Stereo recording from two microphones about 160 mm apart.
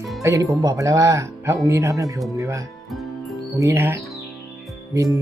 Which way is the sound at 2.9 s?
Centre (ahead or behind).